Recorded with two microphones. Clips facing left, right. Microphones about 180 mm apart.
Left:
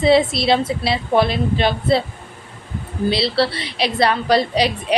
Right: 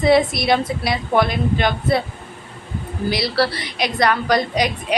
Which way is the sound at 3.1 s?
25° left (ahead or behind).